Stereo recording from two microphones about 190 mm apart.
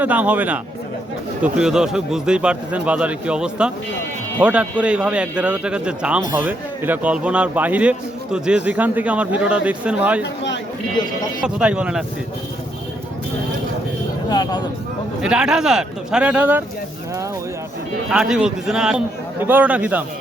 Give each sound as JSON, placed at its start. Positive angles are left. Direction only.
{"t": 0.0, "sound": "a man's voice", "side_deg": -10}
{"t": 11.4, "sound": "a man's voice", "side_deg": -5}
{"t": 14.3, "sound": "speech", "side_deg": 20}
{"t": 15.2, "sound": "a man's voice", "side_deg": -5}
{"t": 18.1, "sound": "a man's voice", "side_deg": -5}